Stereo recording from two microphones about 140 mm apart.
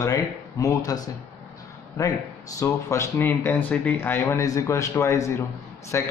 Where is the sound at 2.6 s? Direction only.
20° left (ahead or behind).